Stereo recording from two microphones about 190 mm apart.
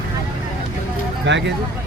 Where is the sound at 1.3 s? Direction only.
70° right (ahead or behind).